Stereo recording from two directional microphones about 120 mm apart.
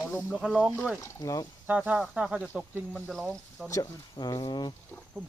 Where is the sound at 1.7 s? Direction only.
10° right (ahead or behind).